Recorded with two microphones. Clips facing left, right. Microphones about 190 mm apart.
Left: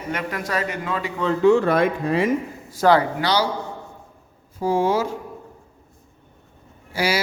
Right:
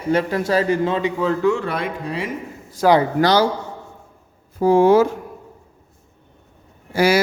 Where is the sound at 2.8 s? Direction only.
5° right (ahead or behind).